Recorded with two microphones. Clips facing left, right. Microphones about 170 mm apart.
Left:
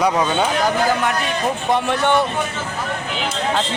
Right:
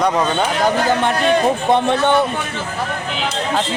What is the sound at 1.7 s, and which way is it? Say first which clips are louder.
Speech: right 2 dB; 25° right (ahead or behind).